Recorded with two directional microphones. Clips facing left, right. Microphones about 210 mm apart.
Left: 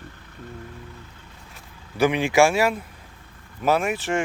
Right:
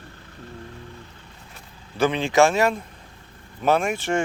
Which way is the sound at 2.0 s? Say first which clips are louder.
Even; 15° left (ahead or behind).